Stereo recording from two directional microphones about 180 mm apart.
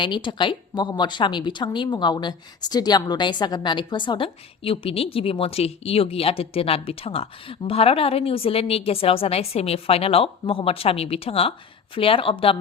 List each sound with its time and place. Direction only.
0.0 s speech: 25° left (ahead or behind)